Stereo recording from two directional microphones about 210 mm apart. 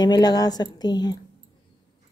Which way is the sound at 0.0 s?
20° left (ahead or behind).